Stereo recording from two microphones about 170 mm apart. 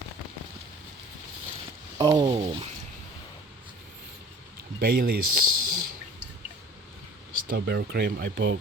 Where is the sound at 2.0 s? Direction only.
25° right (ahead or behind).